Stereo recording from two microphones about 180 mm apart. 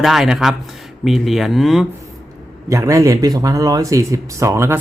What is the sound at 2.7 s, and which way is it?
Speech, 15° right (ahead or behind).